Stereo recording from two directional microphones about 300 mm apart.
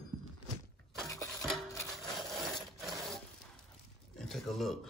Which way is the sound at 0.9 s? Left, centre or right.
Centre.